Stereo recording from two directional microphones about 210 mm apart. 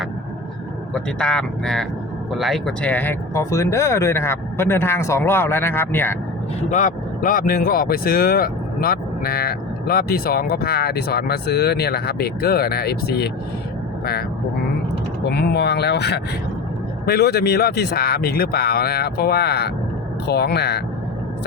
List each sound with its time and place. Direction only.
0.9 s speech: 5° left (ahead or behind)
6.6 s speech: 35° left (ahead or behind)
15.3 s speech: 50° left (ahead or behind)